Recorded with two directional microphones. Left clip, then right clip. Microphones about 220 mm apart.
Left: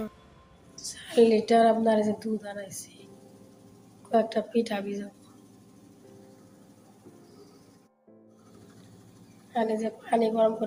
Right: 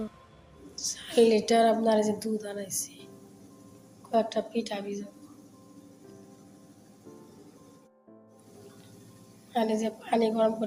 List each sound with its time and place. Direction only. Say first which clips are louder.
0.9 s a woman's voice: left 1 dB; 5° left (ahead or behind)
4.1 s a woman's voice: left 2 dB; 15° left (ahead or behind)
9.5 s a woman's voice: even; centre (ahead or behind)